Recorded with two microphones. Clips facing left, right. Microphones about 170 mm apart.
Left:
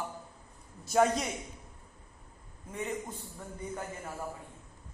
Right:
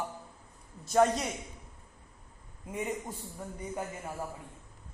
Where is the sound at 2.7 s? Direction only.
15° right (ahead or behind).